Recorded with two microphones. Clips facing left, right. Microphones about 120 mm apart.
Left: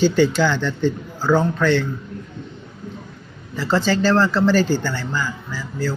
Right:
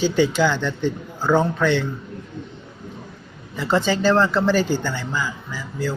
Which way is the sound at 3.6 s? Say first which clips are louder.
Left 1 dB; 15° right (ahead or behind).